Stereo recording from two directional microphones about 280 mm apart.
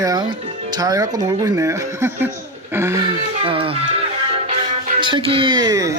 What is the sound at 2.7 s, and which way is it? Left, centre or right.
Music, centre.